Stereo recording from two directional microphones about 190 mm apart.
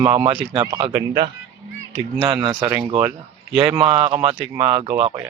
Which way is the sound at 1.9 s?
15° right (ahead or behind).